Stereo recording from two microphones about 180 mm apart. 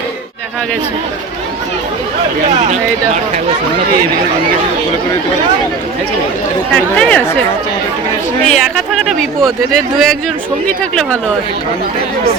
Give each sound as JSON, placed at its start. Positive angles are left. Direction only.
{"t": 2.6, "sound": "speech", "side_deg": -40}
{"t": 6.7, "sound": "speech", "side_deg": 5}
{"t": 8.4, "sound": "speech", "side_deg": 0}